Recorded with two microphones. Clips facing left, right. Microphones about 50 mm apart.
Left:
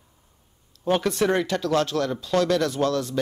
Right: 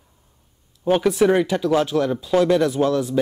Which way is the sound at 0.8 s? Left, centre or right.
Centre.